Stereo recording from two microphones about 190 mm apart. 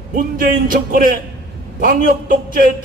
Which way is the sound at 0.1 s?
45° right (ahead or behind).